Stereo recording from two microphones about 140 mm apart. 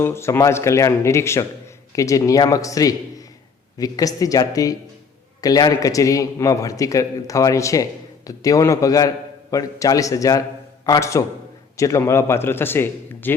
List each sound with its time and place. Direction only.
0.0 s a man's voice: 20° left (ahead or behind)